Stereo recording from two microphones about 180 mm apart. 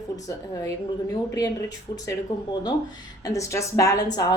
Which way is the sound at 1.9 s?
20° left (ahead or behind).